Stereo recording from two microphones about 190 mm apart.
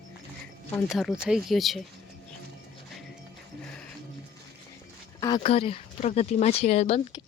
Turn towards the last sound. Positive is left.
turn(degrees=35)  # may be behind; listen again after turning